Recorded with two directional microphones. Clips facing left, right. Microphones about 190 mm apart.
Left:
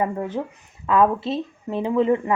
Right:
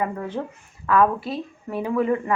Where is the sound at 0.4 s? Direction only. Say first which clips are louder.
Right 1 dB; 10° left (ahead or behind).